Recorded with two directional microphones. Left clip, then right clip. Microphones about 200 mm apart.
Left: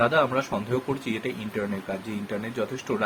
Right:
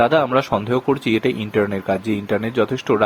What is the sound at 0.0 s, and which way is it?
Speech, 45° right (ahead or behind).